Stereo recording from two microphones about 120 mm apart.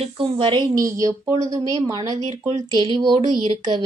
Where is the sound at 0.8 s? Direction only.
30° right (ahead or behind).